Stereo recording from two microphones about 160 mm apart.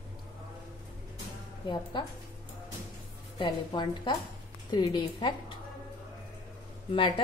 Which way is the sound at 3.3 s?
30° left (ahead or behind).